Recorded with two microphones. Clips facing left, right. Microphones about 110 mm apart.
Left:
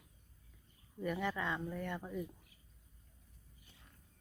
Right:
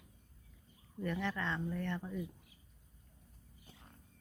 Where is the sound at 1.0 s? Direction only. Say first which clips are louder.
Even; 10° left (ahead or behind).